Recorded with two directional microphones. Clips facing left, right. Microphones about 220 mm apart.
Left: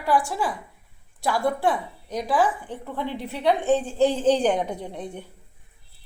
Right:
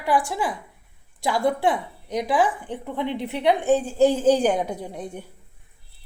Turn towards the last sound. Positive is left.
turn(degrees=-10)  # may be behind; listen again after turning